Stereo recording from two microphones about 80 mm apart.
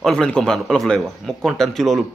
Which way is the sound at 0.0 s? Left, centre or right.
Centre.